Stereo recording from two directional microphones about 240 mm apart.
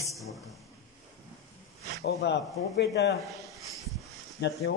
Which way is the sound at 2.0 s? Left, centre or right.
Left.